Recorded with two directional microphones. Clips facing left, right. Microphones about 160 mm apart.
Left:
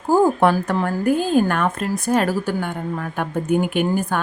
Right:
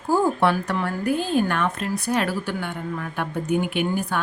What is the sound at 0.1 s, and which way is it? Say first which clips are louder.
Speech: left 4 dB; 45° left (ahead or behind).